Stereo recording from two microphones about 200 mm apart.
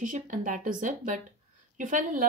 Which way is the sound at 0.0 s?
40° right (ahead or behind).